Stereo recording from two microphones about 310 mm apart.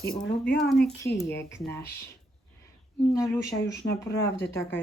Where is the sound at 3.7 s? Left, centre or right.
Centre.